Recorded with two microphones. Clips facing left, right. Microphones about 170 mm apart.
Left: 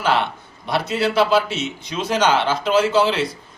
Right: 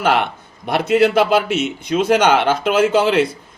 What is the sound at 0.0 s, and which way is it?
A man's voice, 55° right (ahead or behind).